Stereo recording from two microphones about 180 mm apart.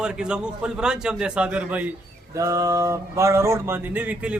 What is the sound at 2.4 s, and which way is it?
A man's voice, 20° right (ahead or behind).